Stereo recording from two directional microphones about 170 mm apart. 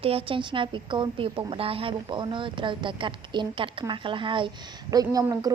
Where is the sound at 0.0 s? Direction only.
35° right (ahead or behind).